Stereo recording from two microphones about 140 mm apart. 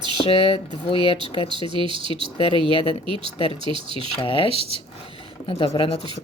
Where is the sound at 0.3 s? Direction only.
40° left (ahead or behind).